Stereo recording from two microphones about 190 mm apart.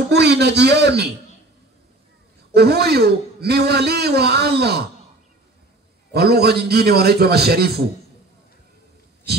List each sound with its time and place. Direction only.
0.1 s a man's voice: 60° right (ahead or behind)
2.5 s a man's voice: 55° right (ahead or behind)
6.1 s a man's voice: 55° right (ahead or behind)